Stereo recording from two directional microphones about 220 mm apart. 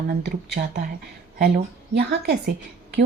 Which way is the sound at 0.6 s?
50° right (ahead or behind).